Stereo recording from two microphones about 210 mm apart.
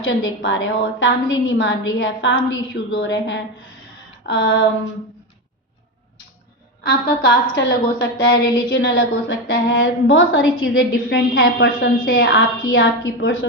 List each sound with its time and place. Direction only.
0.4 s a woman's voice: 60° left (ahead or behind)
6.8 s a woman's voice: 55° left (ahead or behind)
11.9 s a woman's voice: 45° left (ahead or behind)
12.8 s a woman's voice: 70° left (ahead or behind)